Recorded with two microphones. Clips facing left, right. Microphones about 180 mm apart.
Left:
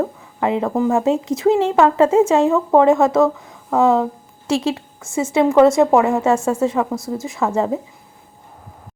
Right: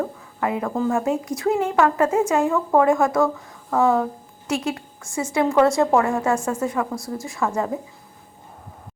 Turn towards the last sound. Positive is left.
turn(degrees=25)  # may be behind; listen again after turning